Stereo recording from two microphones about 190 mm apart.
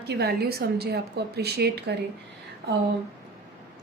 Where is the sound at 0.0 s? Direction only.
60° right (ahead or behind).